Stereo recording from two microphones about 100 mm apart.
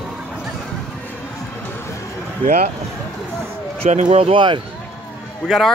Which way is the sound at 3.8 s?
75° right (ahead or behind).